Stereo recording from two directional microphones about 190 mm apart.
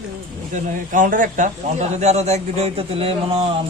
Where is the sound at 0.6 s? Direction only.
45° right (ahead or behind).